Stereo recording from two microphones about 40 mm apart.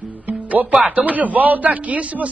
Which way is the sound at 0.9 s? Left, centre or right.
Right.